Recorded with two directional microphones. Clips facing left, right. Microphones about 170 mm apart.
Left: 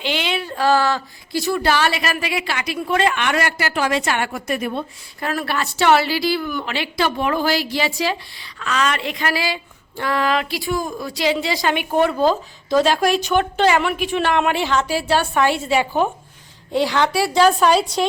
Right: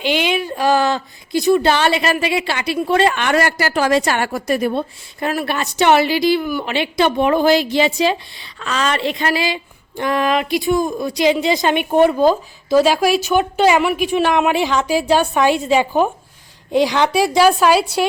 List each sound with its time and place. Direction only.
0.0 s speech: 15° right (ahead or behind); by 4.9 s 35° right (ahead or behind)
5.2 s a woman's voice: 15° right (ahead or behind)